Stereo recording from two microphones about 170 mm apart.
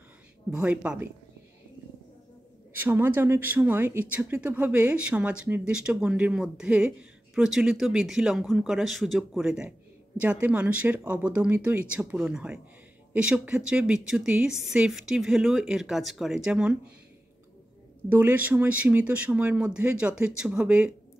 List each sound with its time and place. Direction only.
0.5 s speech: 5° right (ahead or behind)
2.7 s speech: 10° right (ahead or behind)
18.1 s speech: 10° right (ahead or behind)